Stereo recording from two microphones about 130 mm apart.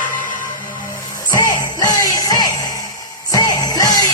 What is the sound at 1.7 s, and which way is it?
Music, 30° left (ahead or behind).